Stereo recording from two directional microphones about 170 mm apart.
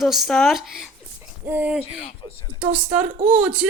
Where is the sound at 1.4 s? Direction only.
10° right (ahead or behind).